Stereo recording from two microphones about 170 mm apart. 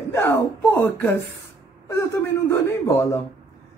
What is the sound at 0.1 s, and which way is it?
Speech, 15° left (ahead or behind).